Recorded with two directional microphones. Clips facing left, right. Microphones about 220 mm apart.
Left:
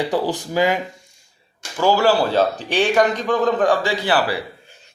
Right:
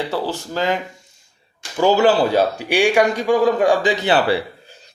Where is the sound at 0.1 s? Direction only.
15° left (ahead or behind).